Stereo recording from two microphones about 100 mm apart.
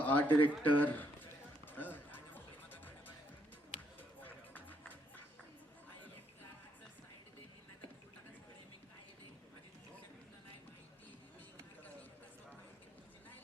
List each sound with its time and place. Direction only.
0.0 s speech: 15° left (ahead or behind)
0.6 s a sound: 15° left (ahead or behind)
4.2 s run: 15° left (ahead or behind)